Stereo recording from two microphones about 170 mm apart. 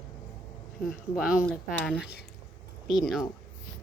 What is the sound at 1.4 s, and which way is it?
Speech, centre (ahead or behind).